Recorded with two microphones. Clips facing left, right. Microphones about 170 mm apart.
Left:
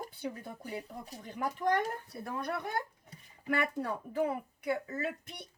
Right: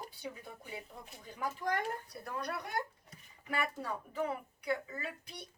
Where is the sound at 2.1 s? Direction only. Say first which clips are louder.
Left 3 dB; 25° left (ahead or behind).